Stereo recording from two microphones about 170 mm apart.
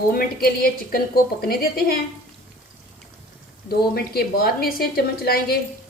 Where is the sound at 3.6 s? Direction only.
65° left (ahead or behind).